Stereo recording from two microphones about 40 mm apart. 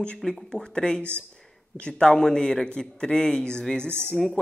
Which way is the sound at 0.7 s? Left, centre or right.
Centre.